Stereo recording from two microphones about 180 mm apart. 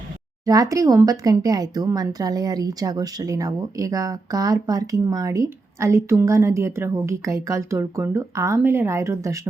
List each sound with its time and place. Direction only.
0.4 s speech: 20° right (ahead or behind)